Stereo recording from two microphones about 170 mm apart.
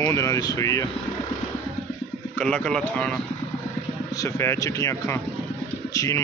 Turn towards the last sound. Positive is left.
turn(degrees=20)  # may be behind; listen again after turning